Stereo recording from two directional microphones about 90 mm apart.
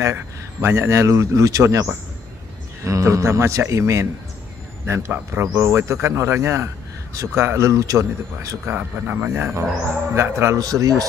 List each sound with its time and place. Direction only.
0.0 s speech: 30° right (ahead or behind)
8.7 s speech: 20° right (ahead or behind)
10.6 s a man's voice: 40° right (ahead or behind)